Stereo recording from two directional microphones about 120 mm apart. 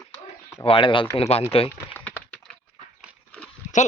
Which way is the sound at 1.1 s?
55° left (ahead or behind).